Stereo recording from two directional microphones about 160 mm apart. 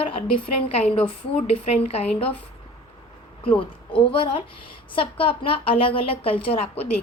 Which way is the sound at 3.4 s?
35° left (ahead or behind).